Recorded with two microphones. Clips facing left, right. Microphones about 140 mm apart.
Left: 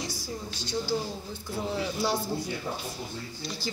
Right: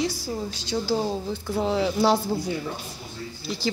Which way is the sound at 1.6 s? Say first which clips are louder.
Right 8 dB; 80° right.